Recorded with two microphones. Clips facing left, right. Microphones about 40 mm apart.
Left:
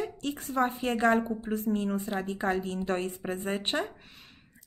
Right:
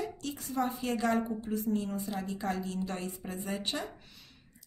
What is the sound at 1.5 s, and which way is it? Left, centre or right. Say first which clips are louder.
Speech: left 4 dB; left.